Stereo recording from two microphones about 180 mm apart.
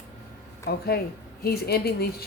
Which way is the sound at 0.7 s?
60° left (ahead or behind).